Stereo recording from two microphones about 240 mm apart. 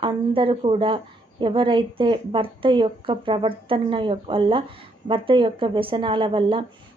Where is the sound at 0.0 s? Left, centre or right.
Right.